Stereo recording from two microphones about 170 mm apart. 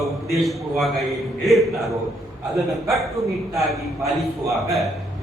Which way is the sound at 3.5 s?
Centre (ahead or behind).